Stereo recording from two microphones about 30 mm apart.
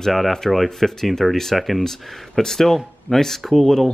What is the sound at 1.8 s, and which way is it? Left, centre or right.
Speech, centre.